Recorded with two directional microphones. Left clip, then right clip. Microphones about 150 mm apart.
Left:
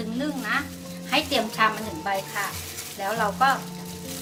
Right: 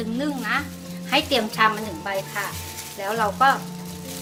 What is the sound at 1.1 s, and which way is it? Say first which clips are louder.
Speech: right 3 dB; 90° right.